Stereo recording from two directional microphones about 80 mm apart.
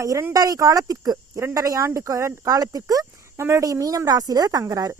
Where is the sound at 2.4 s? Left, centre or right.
Right.